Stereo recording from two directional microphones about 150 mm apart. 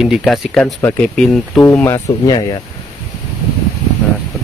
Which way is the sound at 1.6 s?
15° left (ahead or behind).